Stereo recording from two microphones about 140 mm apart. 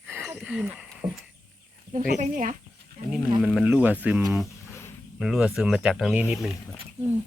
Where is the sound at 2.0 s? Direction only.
70° right (ahead or behind).